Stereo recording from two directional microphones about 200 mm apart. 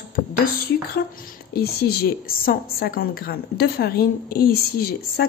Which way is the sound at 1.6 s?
50° left (ahead or behind).